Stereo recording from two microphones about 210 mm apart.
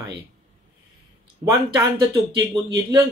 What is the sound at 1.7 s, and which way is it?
Speech, 20° right (ahead or behind).